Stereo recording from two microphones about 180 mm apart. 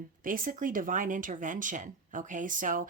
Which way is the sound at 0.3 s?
50° right (ahead or behind).